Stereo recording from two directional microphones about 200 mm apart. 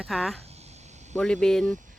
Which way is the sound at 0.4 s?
30° right (ahead or behind).